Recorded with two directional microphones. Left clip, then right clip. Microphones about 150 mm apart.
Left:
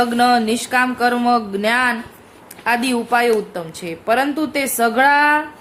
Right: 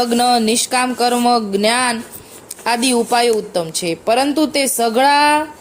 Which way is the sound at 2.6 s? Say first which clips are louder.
Right 2 dB; 45° right (ahead or behind).